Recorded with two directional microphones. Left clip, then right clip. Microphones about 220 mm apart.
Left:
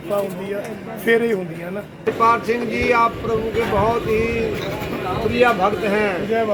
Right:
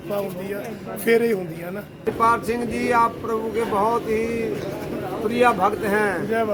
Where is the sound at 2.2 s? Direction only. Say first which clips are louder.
Left 3 dB; 15° right (ahead or behind).